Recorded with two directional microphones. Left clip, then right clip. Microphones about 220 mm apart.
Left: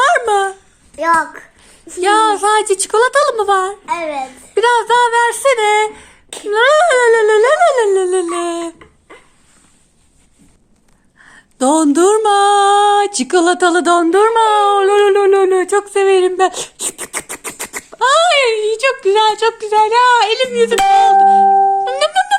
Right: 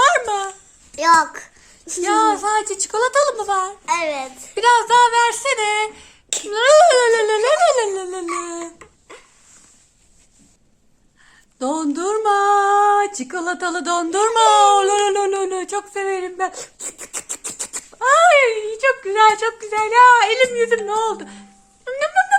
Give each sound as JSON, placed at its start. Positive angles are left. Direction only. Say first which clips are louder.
{"t": 0.0, "sound": "a sound", "louder": "left 4 dB", "side_deg": 25}
{"t": 1.1, "sound": "a child's voice", "louder": "even", "side_deg": -15}
{"t": 2.0, "sound": "a woman's voice", "louder": "left 5 dB", "side_deg": 35}
{"t": 3.8, "sound": "child singing", "louder": "left 1 dB", "side_deg": -20}
{"t": 4.5, "sound": "speech", "louder": "left 2 dB", "side_deg": 25}
{"t": 11.2, "sound": "a sound", "louder": "left 9 dB", "side_deg": 35}
{"t": 18.0, "sound": "speech", "louder": "left 1 dB", "side_deg": 50}
{"t": 21.8, "sound": "music", "louder": "left 4 dB", "side_deg": 50}